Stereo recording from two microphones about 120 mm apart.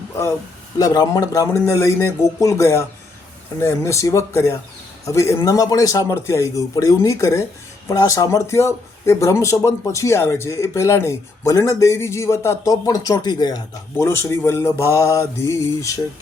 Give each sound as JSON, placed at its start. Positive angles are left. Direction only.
{"t": 0.8, "sound": "speech", "side_deg": 30}
{"t": 13.9, "sound": "speech", "side_deg": 20}